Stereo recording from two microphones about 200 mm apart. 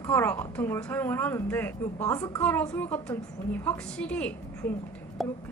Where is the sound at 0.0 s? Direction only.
10° left (ahead or behind).